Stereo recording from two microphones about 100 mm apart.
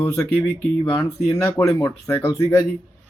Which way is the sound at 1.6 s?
35° left (ahead or behind).